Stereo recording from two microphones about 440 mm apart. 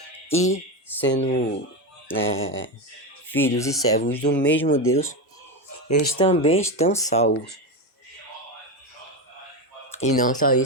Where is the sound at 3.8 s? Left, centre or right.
Left.